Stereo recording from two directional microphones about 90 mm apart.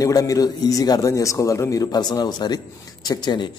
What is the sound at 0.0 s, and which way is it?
A man's voice, 40° left (ahead or behind).